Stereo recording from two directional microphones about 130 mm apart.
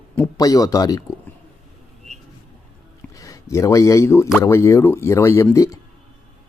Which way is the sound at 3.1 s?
25° left (ahead or behind).